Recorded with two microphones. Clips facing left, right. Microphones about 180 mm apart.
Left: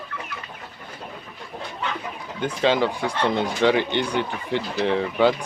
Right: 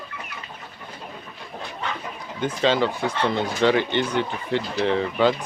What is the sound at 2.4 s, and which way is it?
Speech, 10° left (ahead or behind).